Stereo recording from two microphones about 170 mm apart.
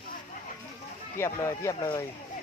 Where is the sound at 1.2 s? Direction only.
15° left (ahead or behind).